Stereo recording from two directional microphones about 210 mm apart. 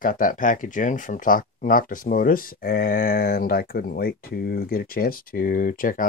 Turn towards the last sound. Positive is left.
turn(degrees=40)  # may be behind; listen again after turning